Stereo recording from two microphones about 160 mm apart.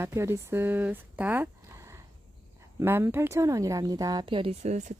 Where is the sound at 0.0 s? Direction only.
15° right (ahead or behind).